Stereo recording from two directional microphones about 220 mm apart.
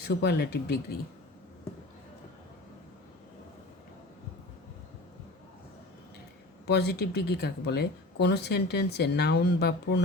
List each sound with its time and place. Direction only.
0.0 s speech: 45° left (ahead or behind)
6.7 s speech: 50° left (ahead or behind)